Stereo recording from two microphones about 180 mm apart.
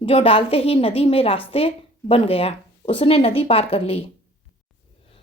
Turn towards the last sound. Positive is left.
turn(degrees=30)  # may be behind; listen again after turning